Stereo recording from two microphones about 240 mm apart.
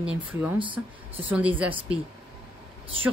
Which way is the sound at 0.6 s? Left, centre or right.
Right.